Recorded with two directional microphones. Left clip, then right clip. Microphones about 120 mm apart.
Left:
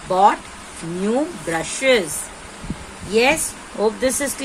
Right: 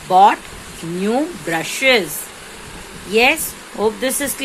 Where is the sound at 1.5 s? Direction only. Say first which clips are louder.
Right 3 dB; 25° right (ahead or behind).